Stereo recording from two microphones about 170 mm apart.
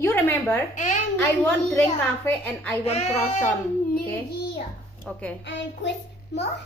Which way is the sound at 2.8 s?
40° left (ahead or behind).